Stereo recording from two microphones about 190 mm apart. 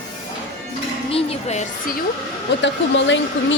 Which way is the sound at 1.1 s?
35° left (ahead or behind).